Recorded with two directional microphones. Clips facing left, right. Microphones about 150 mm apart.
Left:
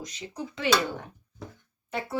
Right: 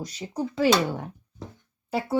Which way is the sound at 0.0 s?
35° right (ahead or behind).